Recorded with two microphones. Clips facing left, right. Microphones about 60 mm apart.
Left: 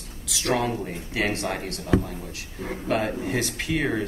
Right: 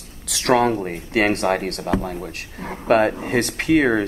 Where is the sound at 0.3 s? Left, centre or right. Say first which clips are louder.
Right 7 dB; right.